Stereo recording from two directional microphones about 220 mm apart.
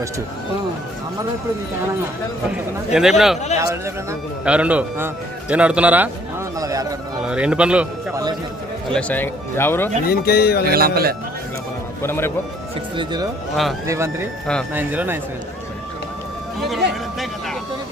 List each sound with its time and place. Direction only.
2.9 s a man's voice: centre (ahead or behind)
3.6 s a man's voice: 15° right (ahead or behind)
6.6 s a sound: 15° right (ahead or behind)
7.3 s a man's voice: 5° right (ahead or behind)
8.9 s speech: 5° left (ahead or behind)
10.1 s speech: 45° left (ahead or behind)
10.7 s a man's voice: 45° right (ahead or behind)
12.0 s speech: 10° left (ahead or behind)
13.0 s speech: 20° right (ahead or behind)
16.6 s speech: centre (ahead or behind)